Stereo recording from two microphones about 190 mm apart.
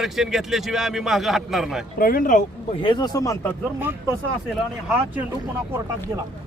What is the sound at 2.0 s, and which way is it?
Speech, 50° left (ahead or behind).